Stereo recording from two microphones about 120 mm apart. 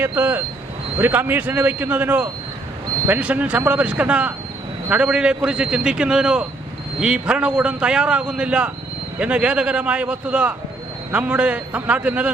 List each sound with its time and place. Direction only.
0.0 s a man's voice: 15° right (ahead or behind)